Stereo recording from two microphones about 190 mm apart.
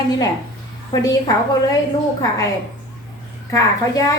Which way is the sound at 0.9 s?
20° left (ahead or behind).